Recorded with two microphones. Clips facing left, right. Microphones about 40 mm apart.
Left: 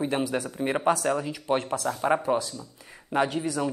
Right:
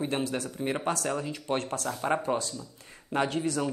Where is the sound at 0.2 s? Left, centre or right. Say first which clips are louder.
Left 3 dB; left.